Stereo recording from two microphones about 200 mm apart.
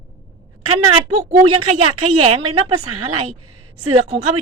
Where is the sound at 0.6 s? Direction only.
90° right.